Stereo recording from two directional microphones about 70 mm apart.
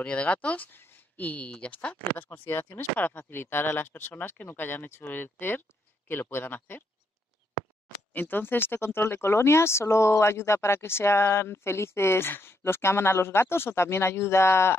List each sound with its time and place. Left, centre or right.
0.0 s speech: centre
2.1 s speech: left
8.1 s speech: left